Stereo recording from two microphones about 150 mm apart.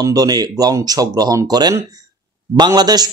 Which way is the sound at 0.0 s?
25° right (ahead or behind).